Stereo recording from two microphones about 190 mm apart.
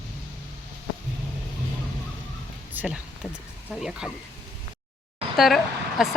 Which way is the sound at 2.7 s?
10° right (ahead or behind).